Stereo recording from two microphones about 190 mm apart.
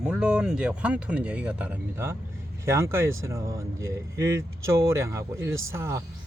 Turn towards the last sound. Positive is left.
turn(degrees=-15)  # may be behind; listen again after turning